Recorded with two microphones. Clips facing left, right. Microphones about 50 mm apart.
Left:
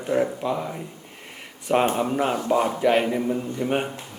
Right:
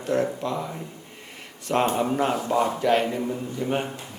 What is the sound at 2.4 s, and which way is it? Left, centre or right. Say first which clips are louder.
Speech: left 3 dB; centre.